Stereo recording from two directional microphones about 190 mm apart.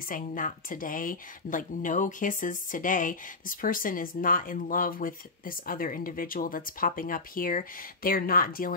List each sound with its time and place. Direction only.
0.1 s speech: 45° left (ahead or behind)